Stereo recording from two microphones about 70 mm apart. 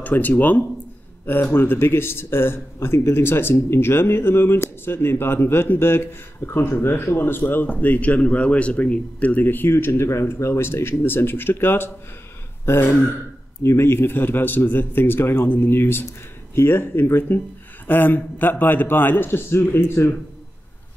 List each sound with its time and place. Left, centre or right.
0.0 s a man's voice: left